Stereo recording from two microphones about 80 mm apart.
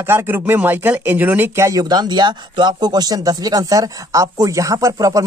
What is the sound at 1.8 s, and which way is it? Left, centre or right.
Speech, right.